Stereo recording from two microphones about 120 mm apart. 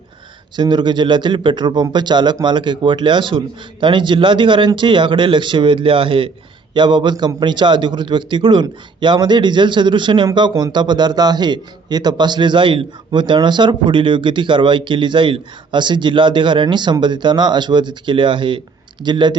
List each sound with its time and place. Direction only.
0.5 s a man's voice: 40° right (ahead or behind)